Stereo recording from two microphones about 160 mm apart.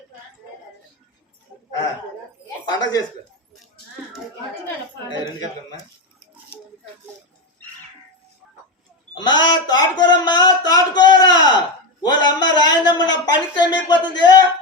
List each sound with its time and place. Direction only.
2.6 s speech: 25° left (ahead or behind)
9.2 s a sound: 25° left (ahead or behind)
12.0 s a man's voice: 25° left (ahead or behind)